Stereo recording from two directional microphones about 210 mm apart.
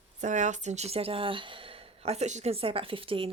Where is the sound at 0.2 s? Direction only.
35° right (ahead or behind).